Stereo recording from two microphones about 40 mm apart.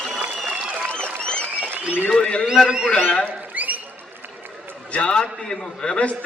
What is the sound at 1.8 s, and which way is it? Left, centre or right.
Speech, right.